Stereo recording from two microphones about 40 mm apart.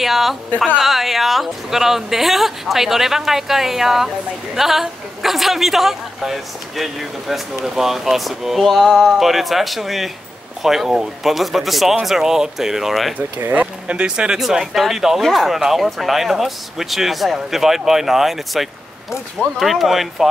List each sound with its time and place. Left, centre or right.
0.0 s a sound: centre
0.7 s a woman's voice: centre
13.8 s speech: right
14.5 s a woman's voice: centre